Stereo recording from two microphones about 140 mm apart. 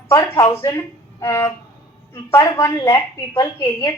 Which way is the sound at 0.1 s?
25° left (ahead or behind).